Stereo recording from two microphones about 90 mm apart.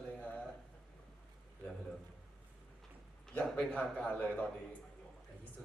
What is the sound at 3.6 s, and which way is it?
Speech, 15° left (ahead or behind).